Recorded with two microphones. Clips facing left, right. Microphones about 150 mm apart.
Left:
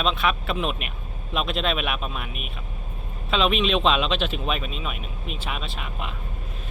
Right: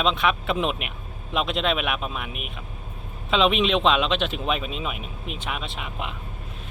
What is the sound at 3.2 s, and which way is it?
Speech, 20° right (ahead or behind).